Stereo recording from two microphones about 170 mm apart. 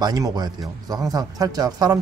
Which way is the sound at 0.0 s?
25° right (ahead or behind).